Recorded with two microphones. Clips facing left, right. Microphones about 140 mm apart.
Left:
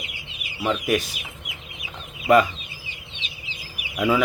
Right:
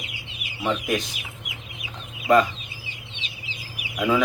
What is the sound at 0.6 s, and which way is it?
Speech, 5° left (ahead or behind).